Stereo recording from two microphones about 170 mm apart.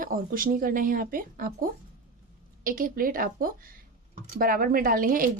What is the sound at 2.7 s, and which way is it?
Speech, 55° right (ahead or behind).